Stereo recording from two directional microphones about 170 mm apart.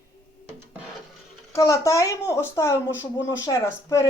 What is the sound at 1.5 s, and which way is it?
Speech, 20° left (ahead or behind).